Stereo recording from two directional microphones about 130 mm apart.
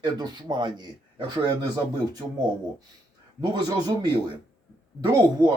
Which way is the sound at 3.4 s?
30° right (ahead or behind).